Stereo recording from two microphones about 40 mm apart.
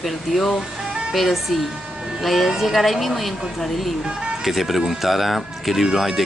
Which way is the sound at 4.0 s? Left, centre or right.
Right.